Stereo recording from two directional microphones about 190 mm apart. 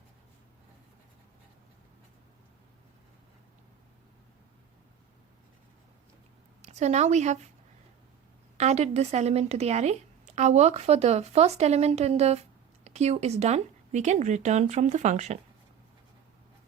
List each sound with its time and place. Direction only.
6.6 s speech: 35° right (ahead or behind)
8.5 s a woman's voice: 35° right (ahead or behind)